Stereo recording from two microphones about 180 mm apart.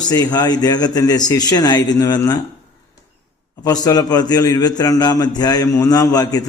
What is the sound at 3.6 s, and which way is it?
A man's voice, 20° left (ahead or behind).